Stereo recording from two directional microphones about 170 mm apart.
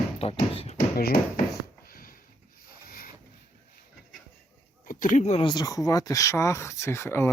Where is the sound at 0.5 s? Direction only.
35° left (ahead or behind).